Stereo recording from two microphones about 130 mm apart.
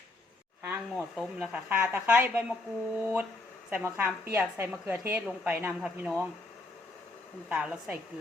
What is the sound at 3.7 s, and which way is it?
A woman's voice, 15° right (ahead or behind).